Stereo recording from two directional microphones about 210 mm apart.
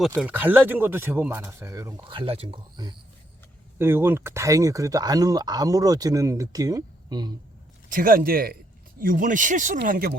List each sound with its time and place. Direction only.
0.2 s speech: 10° right (ahead or behind)
3.8 s speech: 10° right (ahead or behind)
7.9 s speech: 40° right (ahead or behind)